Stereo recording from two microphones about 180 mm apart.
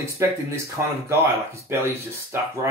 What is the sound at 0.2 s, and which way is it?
Speech, 15° right (ahead or behind).